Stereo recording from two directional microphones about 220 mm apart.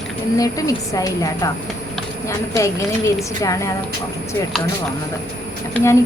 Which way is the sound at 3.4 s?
15° left (ahead or behind).